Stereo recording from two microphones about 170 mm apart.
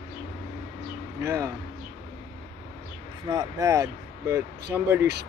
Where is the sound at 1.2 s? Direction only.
20° right (ahead or behind).